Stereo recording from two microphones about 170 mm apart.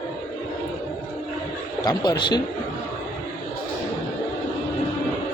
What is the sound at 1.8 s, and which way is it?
Speech, 25° left (ahead or behind).